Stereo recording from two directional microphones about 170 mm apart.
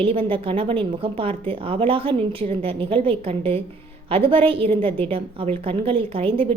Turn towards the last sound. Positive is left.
turn(degrees=-30)  # may be behind; listen again after turning